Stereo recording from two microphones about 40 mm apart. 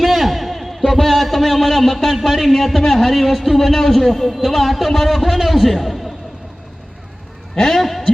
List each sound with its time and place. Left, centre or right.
0.0 s a man's voice: centre
7.5 s a man's voice: centre
7.8 s speech: centre